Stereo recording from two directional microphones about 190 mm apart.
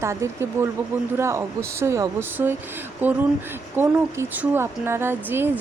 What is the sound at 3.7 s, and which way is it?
Speech, 15° right (ahead or behind).